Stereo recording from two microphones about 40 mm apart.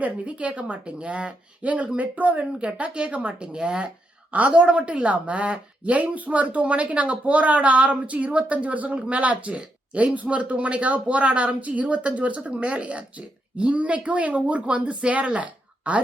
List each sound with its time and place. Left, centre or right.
0.3 s speech: right
4.3 s speech: right